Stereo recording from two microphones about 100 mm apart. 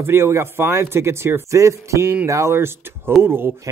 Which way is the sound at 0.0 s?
25° right (ahead or behind).